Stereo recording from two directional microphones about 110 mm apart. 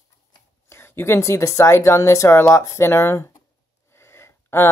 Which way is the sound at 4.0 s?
25° left (ahead or behind).